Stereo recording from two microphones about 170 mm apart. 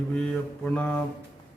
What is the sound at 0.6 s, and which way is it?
Speech, 5° left (ahead or behind).